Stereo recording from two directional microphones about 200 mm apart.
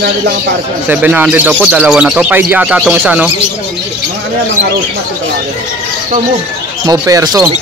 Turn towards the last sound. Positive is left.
turn(degrees=-15)  # may be behind; listen again after turning